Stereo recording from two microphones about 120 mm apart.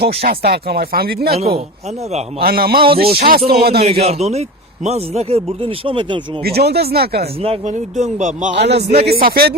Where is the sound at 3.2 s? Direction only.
60° right (ahead or behind); by 6.4 s 45° right (ahead or behind).